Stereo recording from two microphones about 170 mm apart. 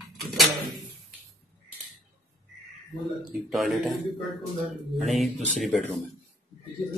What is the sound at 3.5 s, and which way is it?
Speech, centre (ahead or behind).